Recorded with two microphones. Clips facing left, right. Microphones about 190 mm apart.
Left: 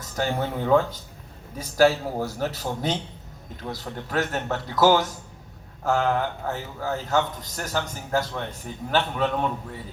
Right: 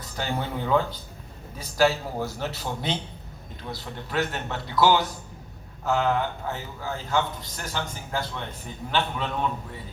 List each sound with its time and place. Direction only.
0.0 s a man's voice: 45° left (ahead or behind)